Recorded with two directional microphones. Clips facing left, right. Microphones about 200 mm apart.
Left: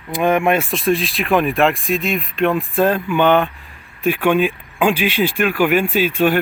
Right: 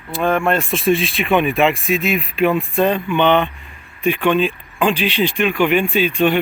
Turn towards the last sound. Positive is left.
turn(degrees=5)  # may be behind; listen again after turning